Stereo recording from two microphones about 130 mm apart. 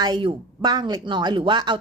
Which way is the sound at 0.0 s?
35° right (ahead or behind).